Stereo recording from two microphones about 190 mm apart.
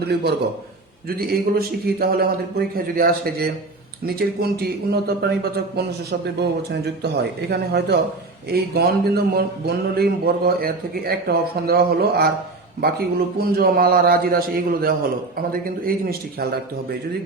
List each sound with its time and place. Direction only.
0.0 s speech: 60° right (ahead or behind)
13.4 s speech: 55° right (ahead or behind)